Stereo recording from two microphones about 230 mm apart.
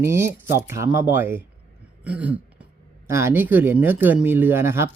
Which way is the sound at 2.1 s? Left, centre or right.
Centre.